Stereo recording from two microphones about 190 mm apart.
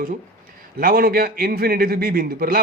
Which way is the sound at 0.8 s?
50° right (ahead or behind).